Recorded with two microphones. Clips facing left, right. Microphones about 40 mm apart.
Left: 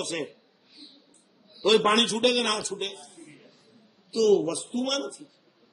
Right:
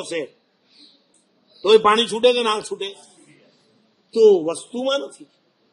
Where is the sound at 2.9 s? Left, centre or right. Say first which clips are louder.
Left 2 dB; left.